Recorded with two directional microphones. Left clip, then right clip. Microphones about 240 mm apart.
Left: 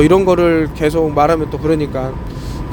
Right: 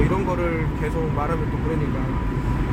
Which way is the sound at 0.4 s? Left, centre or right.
Left.